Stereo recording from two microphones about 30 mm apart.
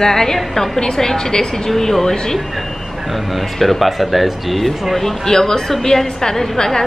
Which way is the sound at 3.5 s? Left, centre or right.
Centre.